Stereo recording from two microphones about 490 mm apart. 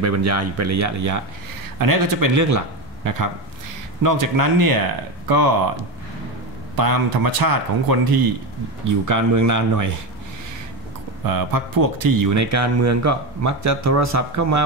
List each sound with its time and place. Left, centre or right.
0.0 s speech: right
6.8 s speech: right
11.2 s speech: right